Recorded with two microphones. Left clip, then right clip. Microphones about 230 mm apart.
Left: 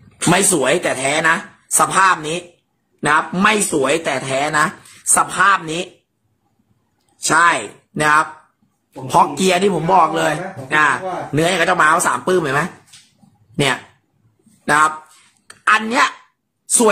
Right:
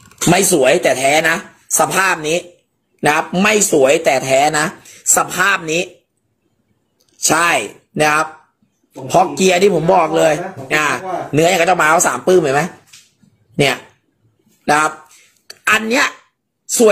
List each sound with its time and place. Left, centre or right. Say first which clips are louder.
0.3 s a man's voice: right 3 dB; centre
7.5 s a man's voice: right 5 dB; centre
14.6 s a sound: even; centre